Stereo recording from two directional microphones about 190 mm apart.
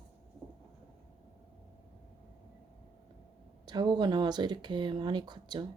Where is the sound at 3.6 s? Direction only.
20° right (ahead or behind).